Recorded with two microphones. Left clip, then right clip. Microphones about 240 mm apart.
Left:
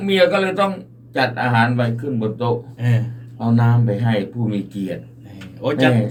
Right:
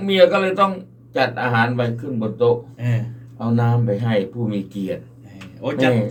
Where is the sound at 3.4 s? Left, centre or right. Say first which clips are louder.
Left 1 dB; centre.